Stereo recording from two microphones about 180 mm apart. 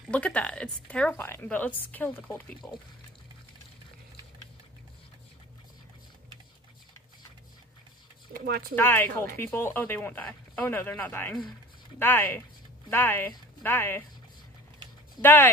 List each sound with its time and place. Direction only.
0.1 s a woman's voice: 5° left (ahead or behind)
8.3 s speech: 55° right (ahead or behind)
8.7 s a woman's voice: 10° left (ahead or behind)
15.2 s a woman's voice: 15° left (ahead or behind)